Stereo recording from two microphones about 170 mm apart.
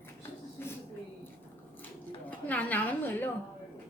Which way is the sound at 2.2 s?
10° left (ahead or behind).